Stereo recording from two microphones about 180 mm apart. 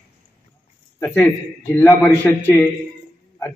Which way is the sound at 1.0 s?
10° left (ahead or behind).